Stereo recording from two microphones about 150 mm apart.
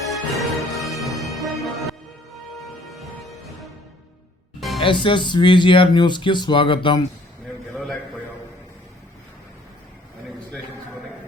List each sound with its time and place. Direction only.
0.1 s music: centre (ahead or behind)
3.0 s music: centre (ahead or behind)
4.8 s speech: 35° left (ahead or behind)
7.7 s a sound: centre (ahead or behind)